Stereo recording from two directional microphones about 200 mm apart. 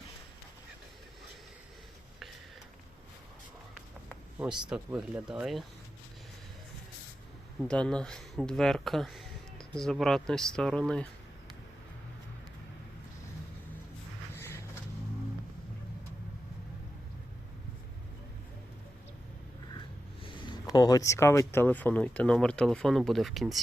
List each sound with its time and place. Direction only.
4.4 s speech: 5° right (ahead or behind)
7.6 s speech: 5° left (ahead or behind)
20.2 s speech: 20° left (ahead or behind); by 23.6 s centre (ahead or behind)